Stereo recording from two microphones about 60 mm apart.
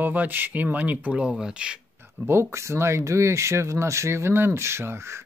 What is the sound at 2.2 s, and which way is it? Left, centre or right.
Speech, right.